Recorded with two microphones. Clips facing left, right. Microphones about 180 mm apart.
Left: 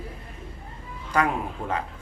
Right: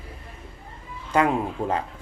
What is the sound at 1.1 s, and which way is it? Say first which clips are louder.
Speech: right 3 dB; 25° right (ahead or behind).